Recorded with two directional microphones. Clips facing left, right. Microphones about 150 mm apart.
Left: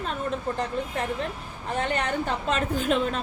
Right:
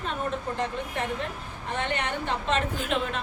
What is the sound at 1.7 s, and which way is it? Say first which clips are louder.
A woman's voice: left 3 dB; 40° left (ahead or behind).